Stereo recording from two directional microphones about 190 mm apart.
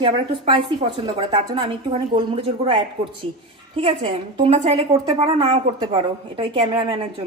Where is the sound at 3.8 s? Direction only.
30° right (ahead or behind).